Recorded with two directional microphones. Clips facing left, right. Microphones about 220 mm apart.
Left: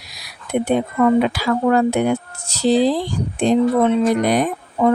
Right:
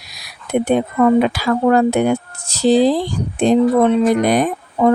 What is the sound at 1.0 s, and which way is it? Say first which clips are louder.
Speech: right 2 dB; 50° right (ahead or behind).